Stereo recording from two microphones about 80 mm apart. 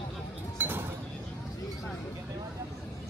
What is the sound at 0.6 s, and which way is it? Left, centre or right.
Chink, right.